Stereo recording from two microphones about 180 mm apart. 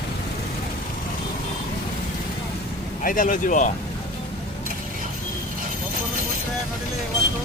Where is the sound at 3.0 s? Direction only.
50° left (ahead or behind).